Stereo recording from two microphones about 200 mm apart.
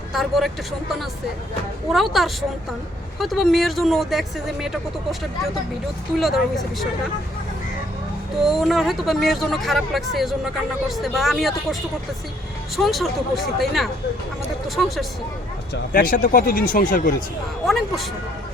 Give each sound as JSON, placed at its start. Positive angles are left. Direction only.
{"t": 0.1, "sound": "speech", "side_deg": 0}
{"t": 1.9, "sound": "speech", "side_deg": 0}
{"t": 6.1, "sound": "speech", "side_deg": 0}
{"t": 8.4, "sound": "speech", "side_deg": 0}
{"t": 15.7, "sound": "speech", "side_deg": 45}
{"t": 17.7, "sound": "speech", "side_deg": 0}